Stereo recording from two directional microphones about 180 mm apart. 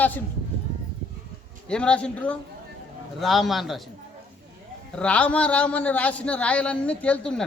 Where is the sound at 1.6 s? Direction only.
5° left (ahead or behind).